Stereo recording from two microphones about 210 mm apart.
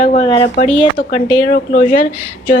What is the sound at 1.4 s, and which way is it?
Speech, 40° left (ahead or behind).